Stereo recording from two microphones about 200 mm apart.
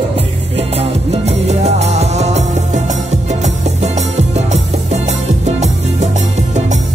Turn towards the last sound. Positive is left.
turn(degrees=-35)  # may be behind; listen again after turning